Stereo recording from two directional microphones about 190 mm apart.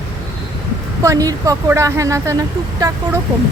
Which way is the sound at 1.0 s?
20° right (ahead or behind).